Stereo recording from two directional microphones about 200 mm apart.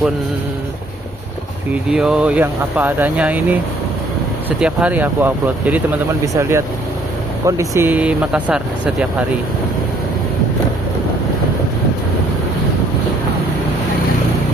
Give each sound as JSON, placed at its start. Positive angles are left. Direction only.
{"t": 1.7, "sound": "speech", "side_deg": -5}